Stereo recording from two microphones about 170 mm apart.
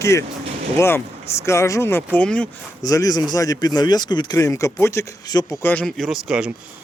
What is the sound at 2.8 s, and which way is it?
Speech, 20° left (ahead or behind).